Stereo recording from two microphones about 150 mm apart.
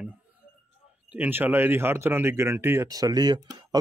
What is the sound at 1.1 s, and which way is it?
Speech, 10° right (ahead or behind).